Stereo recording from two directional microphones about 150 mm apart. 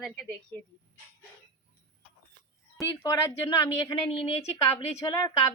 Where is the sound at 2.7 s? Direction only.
20° left (ahead or behind).